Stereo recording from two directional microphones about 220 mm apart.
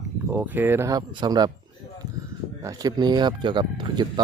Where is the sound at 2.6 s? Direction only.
20° right (ahead or behind).